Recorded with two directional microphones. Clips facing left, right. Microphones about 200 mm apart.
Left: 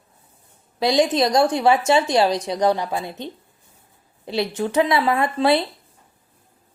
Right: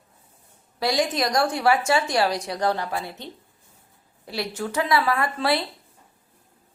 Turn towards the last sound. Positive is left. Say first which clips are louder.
# left 5 dB
turn(degrees=20)  # may be behind; listen again after turning